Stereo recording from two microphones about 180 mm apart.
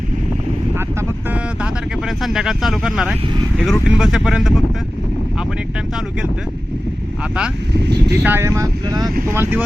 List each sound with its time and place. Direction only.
1.3 s vehicle: 5° right (ahead or behind)
3.6 s speech: 5° right (ahead or behind)
7.7 s speech: 70° right (ahead or behind)
8.1 s speech: 10° right (ahead or behind)